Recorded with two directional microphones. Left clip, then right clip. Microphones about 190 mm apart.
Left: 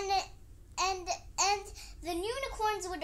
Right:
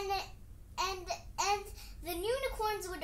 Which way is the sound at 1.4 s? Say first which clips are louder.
Left 2 dB; 25° left (ahead or behind).